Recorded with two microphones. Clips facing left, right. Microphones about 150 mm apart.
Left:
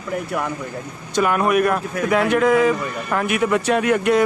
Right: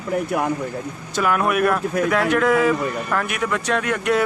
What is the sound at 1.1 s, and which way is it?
Speech, centre (ahead or behind).